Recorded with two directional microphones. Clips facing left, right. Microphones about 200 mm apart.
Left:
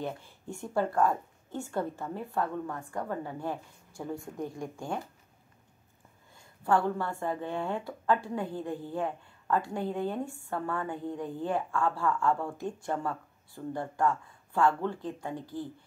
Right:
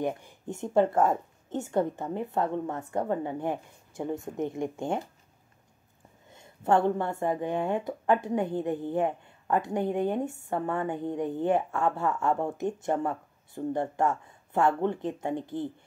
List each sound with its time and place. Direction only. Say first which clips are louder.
0.0 s a woman's voice: right 6 dB; 15° right (ahead or behind)
6.3 s a woman's voice: right 3 dB; 25° right (ahead or behind)